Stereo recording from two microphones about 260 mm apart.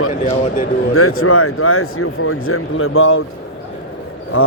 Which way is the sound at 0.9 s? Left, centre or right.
Left.